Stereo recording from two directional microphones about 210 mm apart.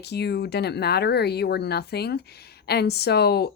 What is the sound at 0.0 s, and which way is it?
A woman's voice, 50° left (ahead or behind).